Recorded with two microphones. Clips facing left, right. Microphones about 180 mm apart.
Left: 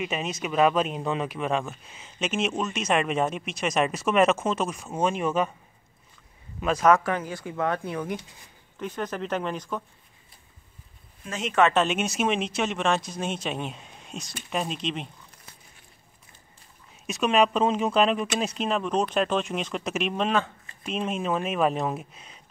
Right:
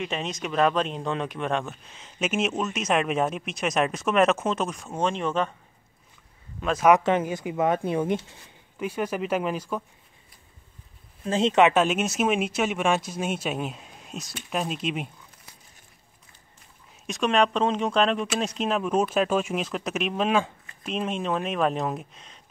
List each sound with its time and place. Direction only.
0.0 s speech: 5° left (ahead or behind)
6.6 s speech: centre (ahead or behind)
6.9 s speech: 20° right (ahead or behind)
8.7 s speech: 10° right (ahead or behind)
11.2 s speech: 30° right (ahead or behind)
11.5 s speech: 15° right (ahead or behind)
17.0 s speech: 5° left (ahead or behind)